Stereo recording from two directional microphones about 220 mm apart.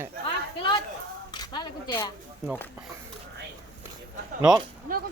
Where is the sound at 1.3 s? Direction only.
20° left (ahead or behind).